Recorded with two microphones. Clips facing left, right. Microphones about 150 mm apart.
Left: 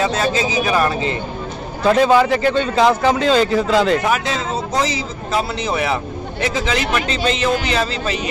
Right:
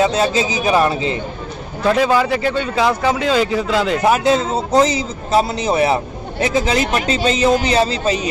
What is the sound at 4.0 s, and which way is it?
A man's voice, 30° right (ahead or behind).